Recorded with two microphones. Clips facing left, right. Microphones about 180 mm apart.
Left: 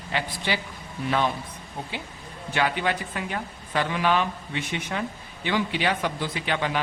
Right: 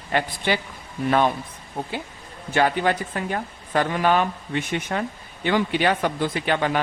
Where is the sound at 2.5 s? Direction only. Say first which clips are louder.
Right 5 dB; 45° right (ahead or behind).